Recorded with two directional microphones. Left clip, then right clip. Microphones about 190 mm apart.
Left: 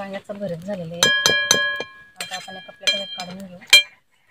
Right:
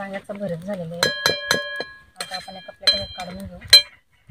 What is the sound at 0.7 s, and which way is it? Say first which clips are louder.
Speech: left 5 dB; 10° left (ahead or behind).